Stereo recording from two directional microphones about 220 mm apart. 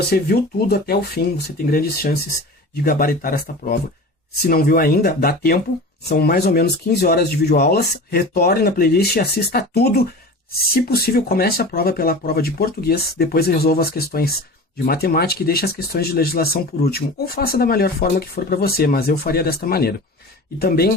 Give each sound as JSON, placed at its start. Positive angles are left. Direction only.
{"t": 0.1, "sound": "speech", "side_deg": 45}